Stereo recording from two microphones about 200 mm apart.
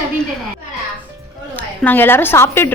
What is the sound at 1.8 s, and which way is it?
Speech, 10° left (ahead or behind).